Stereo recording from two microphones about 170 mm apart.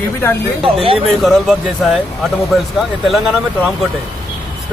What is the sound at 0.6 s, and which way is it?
Speech, 30° right (ahead or behind).